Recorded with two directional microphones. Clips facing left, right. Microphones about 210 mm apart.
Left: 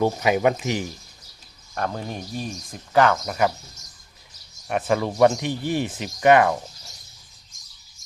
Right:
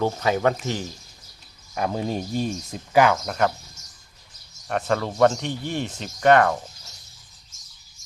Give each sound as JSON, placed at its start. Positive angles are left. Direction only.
{"t": 0.0, "sound": "speech", "side_deg": 15}
{"t": 1.9, "sound": "speech", "side_deg": -20}
{"t": 2.9, "sound": "speech", "side_deg": -5}
{"t": 3.2, "sound": "speech", "side_deg": 5}
{"t": 4.7, "sound": "speech", "side_deg": 10}